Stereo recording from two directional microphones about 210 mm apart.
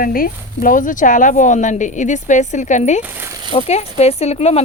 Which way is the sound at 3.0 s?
10° right (ahead or behind).